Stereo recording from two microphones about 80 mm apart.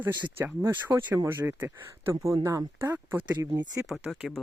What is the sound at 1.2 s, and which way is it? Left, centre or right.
Speech, right.